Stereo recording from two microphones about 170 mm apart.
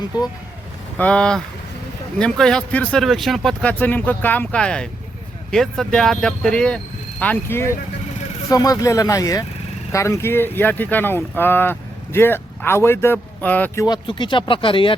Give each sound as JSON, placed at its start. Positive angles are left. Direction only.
{"t": 0.9, "sound": "speech", "side_deg": 5}
{"t": 13.8, "sound": "speech", "side_deg": 25}